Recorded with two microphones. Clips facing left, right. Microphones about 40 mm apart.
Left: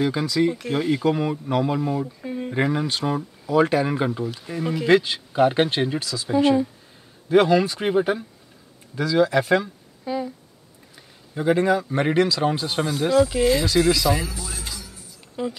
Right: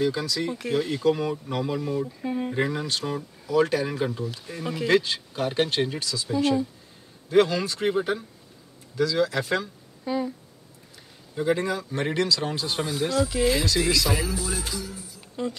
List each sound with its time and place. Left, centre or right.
0.0 s speech: left
2.2 s speech: centre
2.5 s speech: left
4.5 s speech: centre
6.2 s speech: left
10.0 s a sound: centre
11.3 s speech: left; by 13.7 s centre
14.0 s music: centre
15.4 s speech: centre